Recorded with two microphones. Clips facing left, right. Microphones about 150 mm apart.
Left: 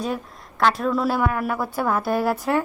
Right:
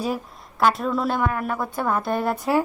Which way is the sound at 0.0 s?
5° right (ahead or behind).